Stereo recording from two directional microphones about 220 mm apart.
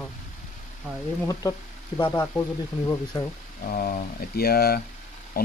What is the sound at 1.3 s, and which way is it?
Speech, 15° left (ahead or behind).